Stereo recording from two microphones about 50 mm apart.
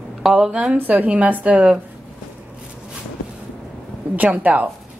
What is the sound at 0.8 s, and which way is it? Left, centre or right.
Speech, right.